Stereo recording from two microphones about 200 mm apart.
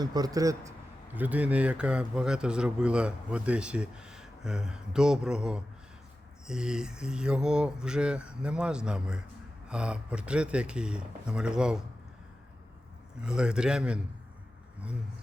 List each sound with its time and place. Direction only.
0.0 s a man's voice: 20° right (ahead or behind); by 11.8 s 5° right (ahead or behind)
13.2 s speech: 5° right (ahead or behind)